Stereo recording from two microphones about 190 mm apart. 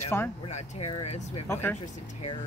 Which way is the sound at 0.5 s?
35° left (ahead or behind).